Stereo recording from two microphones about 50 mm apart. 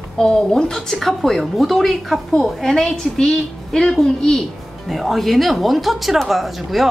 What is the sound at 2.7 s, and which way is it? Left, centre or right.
A woman's voice, centre.